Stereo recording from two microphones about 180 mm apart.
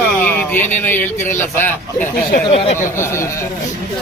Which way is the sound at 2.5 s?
35° left (ahead or behind).